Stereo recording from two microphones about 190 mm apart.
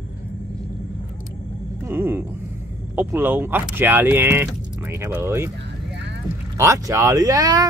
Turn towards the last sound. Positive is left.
turn(degrees=-20)  # may be behind; listen again after turning